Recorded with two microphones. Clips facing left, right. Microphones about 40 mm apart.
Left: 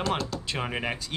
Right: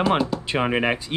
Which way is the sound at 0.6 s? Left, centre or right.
Right.